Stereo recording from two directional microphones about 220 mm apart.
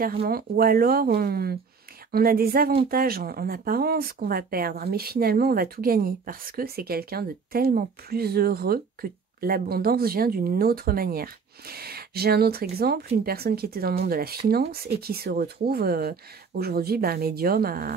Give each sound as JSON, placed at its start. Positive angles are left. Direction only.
{"t": 0.3, "sound": "speech", "side_deg": -45}